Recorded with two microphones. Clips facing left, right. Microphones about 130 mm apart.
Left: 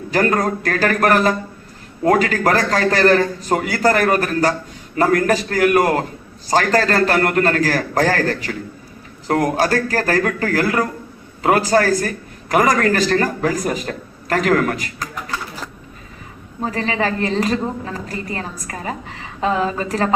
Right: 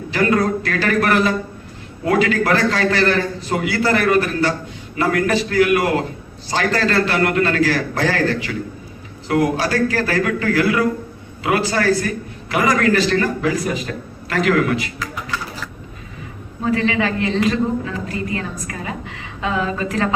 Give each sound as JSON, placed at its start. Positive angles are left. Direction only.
{"t": 0.1, "sound": "a man's voice", "side_deg": 40}
{"t": 15.1, "sound": "a sound", "side_deg": 40}
{"t": 16.6, "sound": "a woman's voice", "side_deg": 35}